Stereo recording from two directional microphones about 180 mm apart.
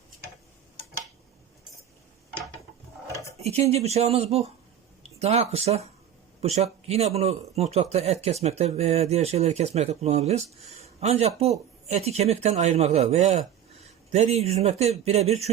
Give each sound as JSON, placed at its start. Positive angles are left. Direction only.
{"t": 3.4, "sound": "a man's voice", "side_deg": -35}